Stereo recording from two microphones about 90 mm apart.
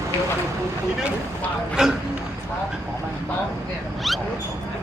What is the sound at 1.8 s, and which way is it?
Speech, 5° right (ahead or behind).